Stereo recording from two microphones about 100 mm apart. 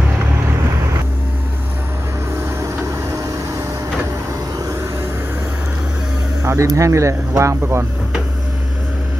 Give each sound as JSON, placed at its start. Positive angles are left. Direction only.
{"t": 6.4, "sound": "speech", "side_deg": -30}